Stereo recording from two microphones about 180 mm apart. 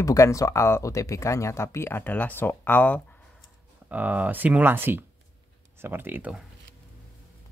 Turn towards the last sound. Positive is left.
turn(degrees=-10)  # may be behind; listen again after turning